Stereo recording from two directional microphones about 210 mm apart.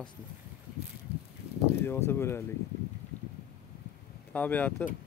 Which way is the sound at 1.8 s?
10° left (ahead or behind).